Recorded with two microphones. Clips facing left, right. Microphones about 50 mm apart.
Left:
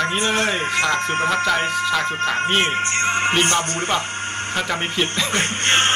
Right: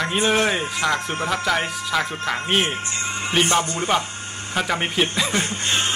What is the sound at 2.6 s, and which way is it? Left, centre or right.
Speech, left.